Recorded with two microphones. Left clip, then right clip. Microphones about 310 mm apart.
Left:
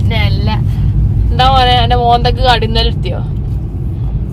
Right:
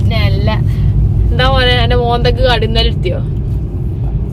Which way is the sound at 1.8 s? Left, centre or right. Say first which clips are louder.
Left 3 dB; centre.